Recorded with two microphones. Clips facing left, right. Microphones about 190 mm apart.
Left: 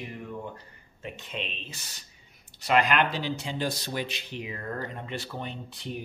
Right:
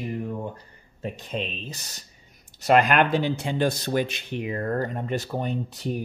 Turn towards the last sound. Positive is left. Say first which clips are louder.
# right 8 dB
turn(degrees=-45)  # may be behind; listen again after turning